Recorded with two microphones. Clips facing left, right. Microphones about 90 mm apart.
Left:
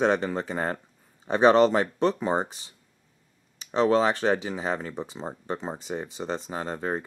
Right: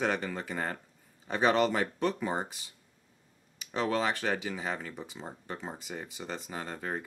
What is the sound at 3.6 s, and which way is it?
Speech, 30° left (ahead or behind).